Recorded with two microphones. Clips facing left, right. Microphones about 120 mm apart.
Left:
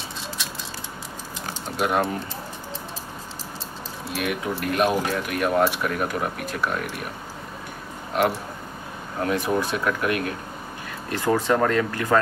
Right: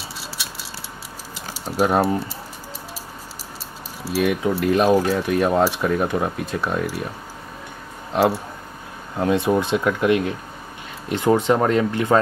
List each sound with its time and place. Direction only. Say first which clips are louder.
1.8 s speech: right 4 dB; 35° right (ahead or behind)
4.1 s speech: right 7 dB; 30° right (ahead or behind)
8.1 s speech: right 4 dB; 20° right (ahead or behind)